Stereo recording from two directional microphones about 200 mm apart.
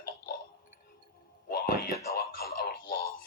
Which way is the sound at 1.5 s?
50° left (ahead or behind).